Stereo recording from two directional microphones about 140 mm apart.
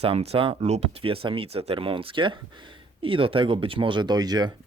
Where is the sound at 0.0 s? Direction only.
45° right (ahead or behind).